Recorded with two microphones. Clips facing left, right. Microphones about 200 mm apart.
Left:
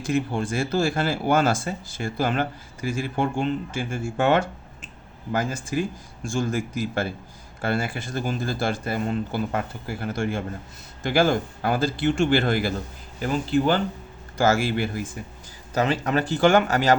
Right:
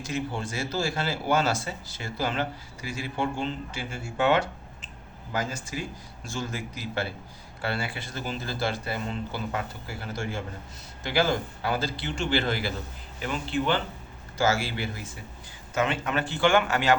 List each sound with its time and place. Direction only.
0.0 s speech: 55° left (ahead or behind)
14.3 s speech: 50° left (ahead or behind)
15.7 s speech: 35° left (ahead or behind)